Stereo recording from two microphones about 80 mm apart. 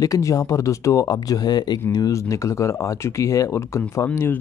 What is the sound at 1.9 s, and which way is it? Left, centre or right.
Speech, left.